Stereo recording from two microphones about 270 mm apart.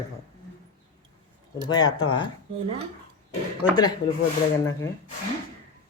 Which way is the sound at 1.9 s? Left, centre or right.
Centre.